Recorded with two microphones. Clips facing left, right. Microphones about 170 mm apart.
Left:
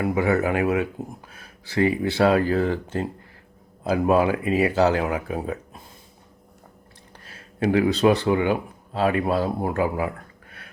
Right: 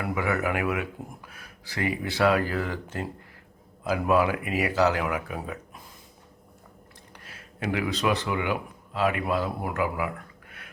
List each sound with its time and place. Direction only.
0.0 s speech: 30° left (ahead or behind)
7.3 s a man's voice: 30° left (ahead or behind)